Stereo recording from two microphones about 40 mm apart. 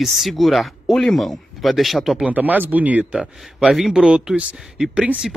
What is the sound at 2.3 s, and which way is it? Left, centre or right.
Speech, right.